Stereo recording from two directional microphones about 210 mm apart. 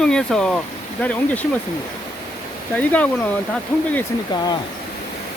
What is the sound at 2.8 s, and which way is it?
Speech, 10° left (ahead or behind).